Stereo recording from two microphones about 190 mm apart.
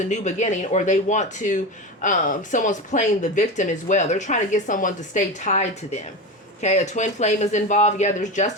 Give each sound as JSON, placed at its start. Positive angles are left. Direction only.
{"t": 0.1, "sound": "speech", "side_deg": 40}